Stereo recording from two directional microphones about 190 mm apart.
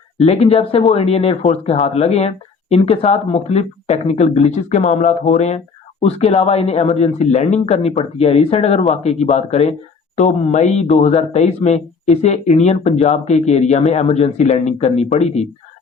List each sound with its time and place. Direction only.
0.2 s speech: 35° left (ahead or behind)